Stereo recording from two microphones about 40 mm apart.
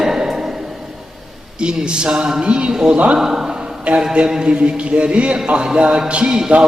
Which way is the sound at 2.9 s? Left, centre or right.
Right.